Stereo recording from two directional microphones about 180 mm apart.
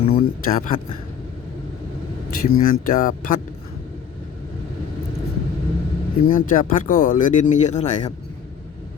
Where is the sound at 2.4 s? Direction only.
50° left (ahead or behind).